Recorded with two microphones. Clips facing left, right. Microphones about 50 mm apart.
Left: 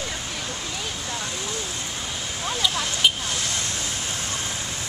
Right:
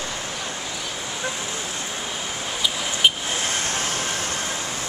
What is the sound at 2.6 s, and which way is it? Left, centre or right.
Vehicle, centre.